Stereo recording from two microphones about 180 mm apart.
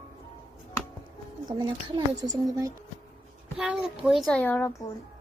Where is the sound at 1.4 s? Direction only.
25° right (ahead or behind).